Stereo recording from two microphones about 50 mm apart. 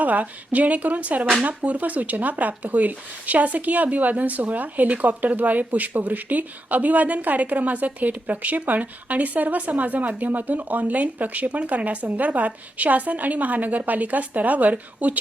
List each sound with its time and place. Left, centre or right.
0.0 s speech: right